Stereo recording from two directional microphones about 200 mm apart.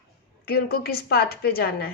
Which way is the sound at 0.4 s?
50° left (ahead or behind).